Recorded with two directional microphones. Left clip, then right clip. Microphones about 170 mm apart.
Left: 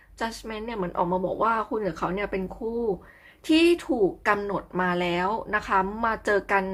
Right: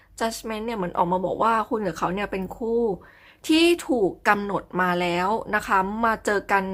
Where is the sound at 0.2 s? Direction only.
30° right (ahead or behind).